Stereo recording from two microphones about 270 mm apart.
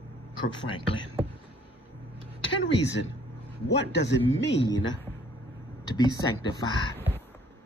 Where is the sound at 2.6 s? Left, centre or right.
Left.